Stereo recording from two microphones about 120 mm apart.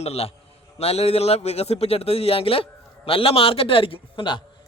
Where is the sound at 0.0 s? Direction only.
55° left (ahead or behind).